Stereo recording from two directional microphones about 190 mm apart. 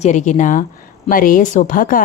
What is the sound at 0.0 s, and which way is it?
Speech, 40° left (ahead or behind).